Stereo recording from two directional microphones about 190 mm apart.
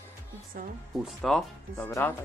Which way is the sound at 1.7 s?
15° left (ahead or behind).